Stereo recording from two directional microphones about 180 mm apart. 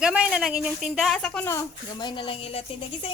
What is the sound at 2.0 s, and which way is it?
A woman's voice, 25° left (ahead or behind).